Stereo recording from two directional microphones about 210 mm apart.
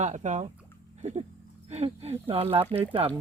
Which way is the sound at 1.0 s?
30° right (ahead or behind).